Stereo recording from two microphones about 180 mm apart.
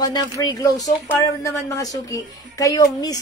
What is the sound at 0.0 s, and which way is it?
A woman's voice, 20° left (ahead or behind).